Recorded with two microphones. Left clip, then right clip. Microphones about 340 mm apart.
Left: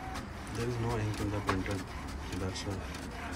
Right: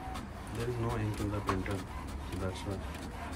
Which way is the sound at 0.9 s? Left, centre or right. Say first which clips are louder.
Left 1 dB; centre.